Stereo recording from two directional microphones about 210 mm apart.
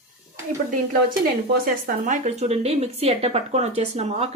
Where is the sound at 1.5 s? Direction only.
40° right (ahead or behind).